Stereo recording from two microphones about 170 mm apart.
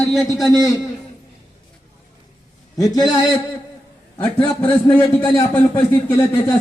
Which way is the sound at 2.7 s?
20° left (ahead or behind).